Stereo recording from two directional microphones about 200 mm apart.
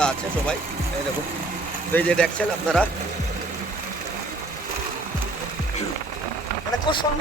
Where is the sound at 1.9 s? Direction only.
5° left (ahead or behind).